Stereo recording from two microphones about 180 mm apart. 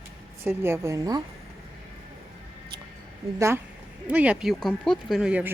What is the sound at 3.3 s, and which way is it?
A woman's voice, 15° right (ahead or behind).